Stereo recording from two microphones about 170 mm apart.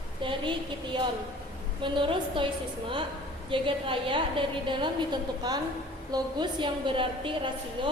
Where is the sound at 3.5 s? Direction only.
30° right (ahead or behind).